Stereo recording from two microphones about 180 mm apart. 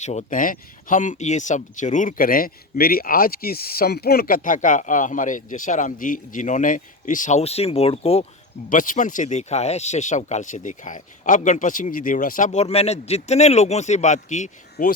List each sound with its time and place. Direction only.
0.0 s speech: 40° left (ahead or behind)
8.7 s speech: 45° left (ahead or behind)